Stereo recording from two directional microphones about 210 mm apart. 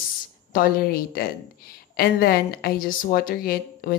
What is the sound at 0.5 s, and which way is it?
A woman's voice, 45° left (ahead or behind).